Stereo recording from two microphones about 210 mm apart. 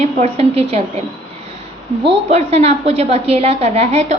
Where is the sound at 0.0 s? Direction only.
30° right (ahead or behind).